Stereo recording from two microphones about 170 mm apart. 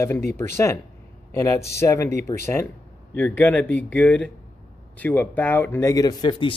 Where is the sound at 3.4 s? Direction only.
10° left (ahead or behind).